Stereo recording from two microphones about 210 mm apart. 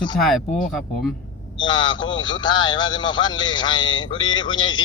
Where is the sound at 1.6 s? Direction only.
20° left (ahead or behind).